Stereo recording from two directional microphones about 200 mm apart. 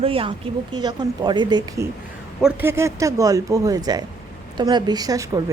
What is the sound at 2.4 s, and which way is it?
Speech, 5° right (ahead or behind).